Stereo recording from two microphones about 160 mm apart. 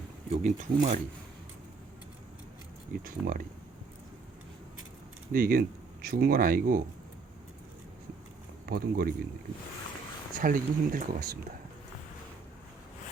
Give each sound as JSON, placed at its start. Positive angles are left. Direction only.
{"t": 0.3, "sound": "speech", "side_deg": -45}
{"t": 2.9, "sound": "speech", "side_deg": -60}
{"t": 5.3, "sound": "speech", "side_deg": -65}
{"t": 8.6, "sound": "speech", "side_deg": -70}
{"t": 10.3, "sound": "speech", "side_deg": -60}